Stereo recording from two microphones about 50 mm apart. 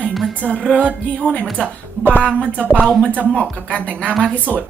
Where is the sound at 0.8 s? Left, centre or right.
Right.